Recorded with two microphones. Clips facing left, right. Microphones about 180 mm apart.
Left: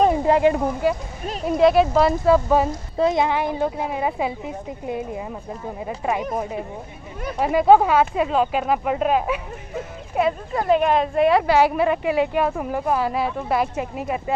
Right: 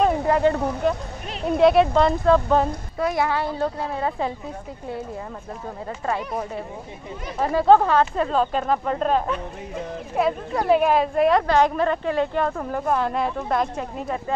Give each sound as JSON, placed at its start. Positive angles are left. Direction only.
{"t": 0.0, "sound": "speech", "side_deg": 15}
{"t": 1.4, "sound": "speech", "side_deg": 0}
{"t": 3.0, "sound": "speech", "side_deg": 20}
{"t": 7.3, "sound": "speech", "side_deg": 10}